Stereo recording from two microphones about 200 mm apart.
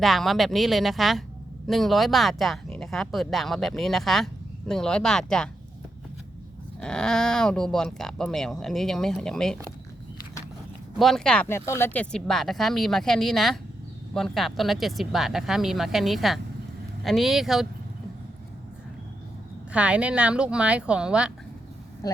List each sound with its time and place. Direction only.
0.0 s speech: centre (ahead or behind)
6.8 s speech: 5° left (ahead or behind)
10.9 s speech: centre (ahead or behind)
19.7 s speech: 5° right (ahead or behind)